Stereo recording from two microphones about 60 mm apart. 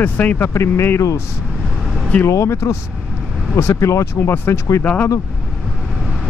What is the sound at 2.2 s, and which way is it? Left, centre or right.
Speech, left.